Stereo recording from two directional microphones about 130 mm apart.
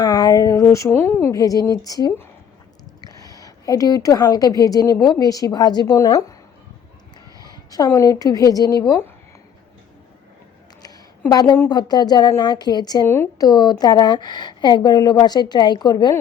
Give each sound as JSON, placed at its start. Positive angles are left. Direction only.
{"t": 0.0, "sound": "a woman's voice", "side_deg": 30}
{"t": 1.4, "sound": "a woman's voice", "side_deg": 25}
{"t": 7.3, "sound": "a sound", "side_deg": 30}
{"t": 7.9, "sound": "a woman's voice", "side_deg": 25}
{"t": 11.3, "sound": "a woman's voice", "side_deg": 30}